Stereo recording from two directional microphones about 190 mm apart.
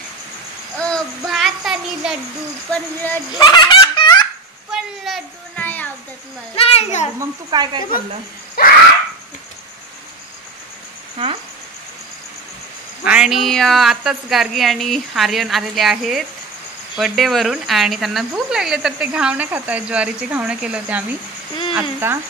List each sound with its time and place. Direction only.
0.7 s child singing: 5° left (ahead or behind)
2.7 s speech: 10° left (ahead or behind)
3.3 s laughter: 20° left (ahead or behind)
4.6 s a sound: centre (ahead or behind)
6.5 s a child's voice: 30° left (ahead or behind)
7.2 s speech: 20° right (ahead or behind)
8.6 s a sound: 55° left (ahead or behind)
13.0 s speech: 5° right (ahead or behind)